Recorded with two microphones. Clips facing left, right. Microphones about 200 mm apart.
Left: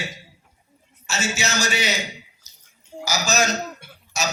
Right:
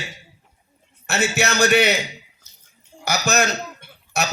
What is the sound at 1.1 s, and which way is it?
Speech, 60° right (ahead or behind).